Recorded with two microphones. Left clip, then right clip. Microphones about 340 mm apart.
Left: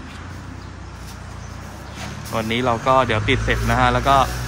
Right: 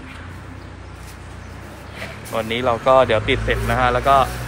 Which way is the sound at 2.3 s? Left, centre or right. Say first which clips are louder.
Right 1 dB; centre.